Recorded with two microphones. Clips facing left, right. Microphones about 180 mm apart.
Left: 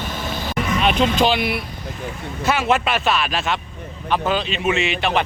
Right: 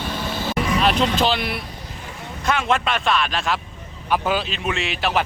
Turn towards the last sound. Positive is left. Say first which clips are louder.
# left 2 dB
turn(degrees=0)  # may be behind; listen again after turning